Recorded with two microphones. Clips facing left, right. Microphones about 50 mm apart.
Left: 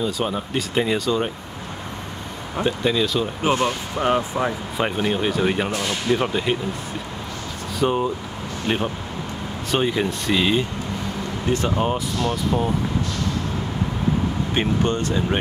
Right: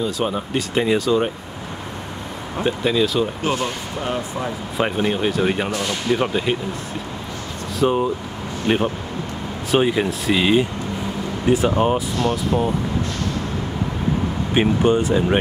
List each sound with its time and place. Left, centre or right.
0.0 s speech: centre
2.6 s speech: centre
3.6 s speech: left
4.7 s speech: centre
7.8 s speech: centre
14.5 s speech: centre